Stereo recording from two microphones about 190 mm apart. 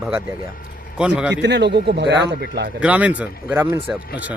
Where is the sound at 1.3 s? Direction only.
65° right (ahead or behind).